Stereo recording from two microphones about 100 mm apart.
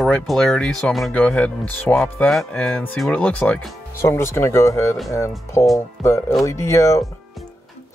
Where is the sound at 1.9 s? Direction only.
20° left (ahead or behind).